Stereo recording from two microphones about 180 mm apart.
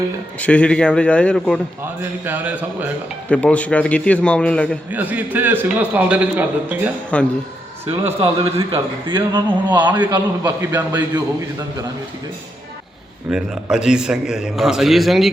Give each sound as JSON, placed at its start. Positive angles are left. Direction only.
{"t": 0.3, "sound": "a man's voice", "side_deg": 5}
{"t": 1.8, "sound": "a man's voice", "side_deg": -10}
{"t": 3.2, "sound": "a man's voice", "side_deg": 5}
{"t": 4.9, "sound": "a man's voice", "side_deg": -10}
{"t": 7.1, "sound": "a man's voice", "side_deg": 5}
{"t": 8.2, "sound": "a man's voice", "side_deg": -30}
{"t": 13.3, "sound": "a man's voice", "side_deg": -5}